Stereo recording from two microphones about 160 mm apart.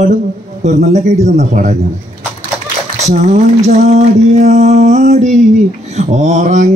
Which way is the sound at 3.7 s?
45° right (ahead or behind).